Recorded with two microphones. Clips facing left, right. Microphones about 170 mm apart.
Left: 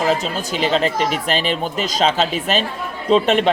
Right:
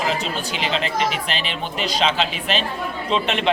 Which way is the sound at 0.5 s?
45° left (ahead or behind).